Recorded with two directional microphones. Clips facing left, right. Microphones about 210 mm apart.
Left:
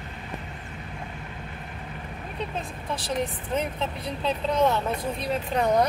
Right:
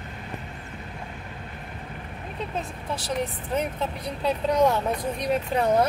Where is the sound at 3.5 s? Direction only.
15° right (ahead or behind).